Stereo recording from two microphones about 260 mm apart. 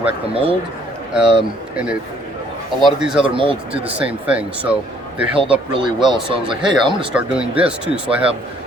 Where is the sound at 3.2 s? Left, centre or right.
Centre.